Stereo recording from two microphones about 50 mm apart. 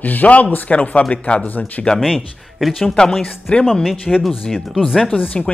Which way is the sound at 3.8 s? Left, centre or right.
Centre.